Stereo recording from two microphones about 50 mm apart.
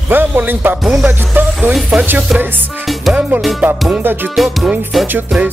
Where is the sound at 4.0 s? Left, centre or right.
Right.